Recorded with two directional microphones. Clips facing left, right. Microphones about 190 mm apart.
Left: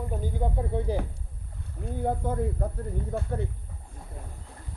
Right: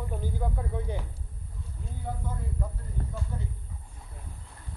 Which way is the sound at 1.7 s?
60° left (ahead or behind).